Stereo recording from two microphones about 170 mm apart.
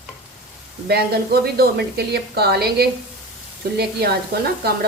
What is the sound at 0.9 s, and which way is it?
Speech, 65° right (ahead or behind).